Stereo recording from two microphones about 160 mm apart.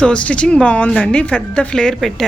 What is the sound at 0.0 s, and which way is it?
Speech, 5° left (ahead or behind).